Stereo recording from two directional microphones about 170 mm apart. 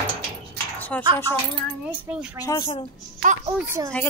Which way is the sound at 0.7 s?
10° left (ahead or behind).